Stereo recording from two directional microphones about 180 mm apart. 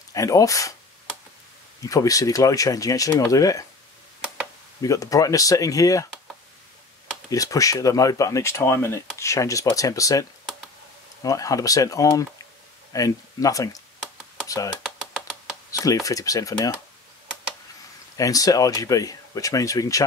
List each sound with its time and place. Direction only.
0.1 s speech: 20° left (ahead or behind)
1.8 s speech: 20° left (ahead or behind)
4.8 s speech: 20° left (ahead or behind)
7.2 s speech: 20° left (ahead or behind)
11.2 s speech: 20° left (ahead or behind)
15.8 s speech: 20° left (ahead or behind)
18.1 s speech: 20° left (ahead or behind)